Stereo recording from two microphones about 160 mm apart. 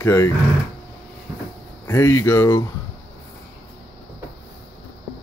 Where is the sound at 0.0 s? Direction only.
20° left (ahead or behind).